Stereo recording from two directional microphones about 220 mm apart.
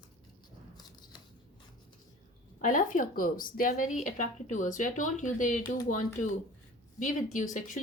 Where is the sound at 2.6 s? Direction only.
35° left (ahead or behind).